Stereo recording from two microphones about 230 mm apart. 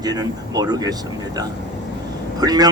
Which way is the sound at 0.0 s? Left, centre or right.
Centre.